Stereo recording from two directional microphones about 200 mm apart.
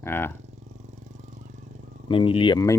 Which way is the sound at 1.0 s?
35° right (ahead or behind).